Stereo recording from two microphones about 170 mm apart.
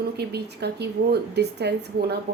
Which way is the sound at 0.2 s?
75° right (ahead or behind).